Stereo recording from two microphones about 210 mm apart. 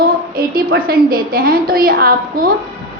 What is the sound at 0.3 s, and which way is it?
A woman's voice, 45° right (ahead or behind).